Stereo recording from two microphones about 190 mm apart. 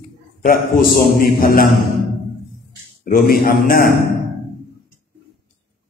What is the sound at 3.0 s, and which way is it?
Speech, 50° left (ahead or behind).